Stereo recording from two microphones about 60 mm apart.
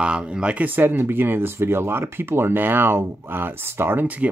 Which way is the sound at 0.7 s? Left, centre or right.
Right.